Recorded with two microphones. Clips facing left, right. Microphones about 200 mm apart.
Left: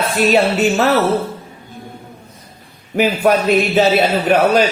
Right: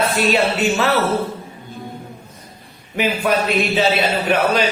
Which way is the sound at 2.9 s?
45° left (ahead or behind).